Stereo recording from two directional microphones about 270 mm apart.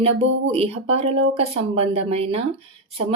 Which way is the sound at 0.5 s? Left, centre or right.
Right.